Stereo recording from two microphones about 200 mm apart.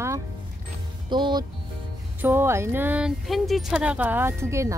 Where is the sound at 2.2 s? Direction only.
10° right (ahead or behind).